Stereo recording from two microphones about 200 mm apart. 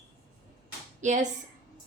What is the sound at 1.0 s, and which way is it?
Speech, 35° right (ahead or behind).